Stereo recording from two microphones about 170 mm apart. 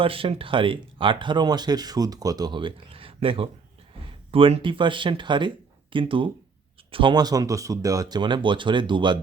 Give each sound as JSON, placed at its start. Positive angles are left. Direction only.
{"t": 0.0, "sound": "speech", "side_deg": -30}